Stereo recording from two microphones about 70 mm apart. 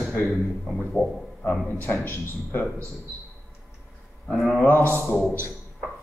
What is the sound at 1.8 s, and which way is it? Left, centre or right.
Speech, left.